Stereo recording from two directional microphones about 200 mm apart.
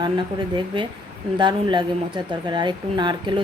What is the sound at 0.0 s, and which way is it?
A woman's voice, 25° right (ahead or behind).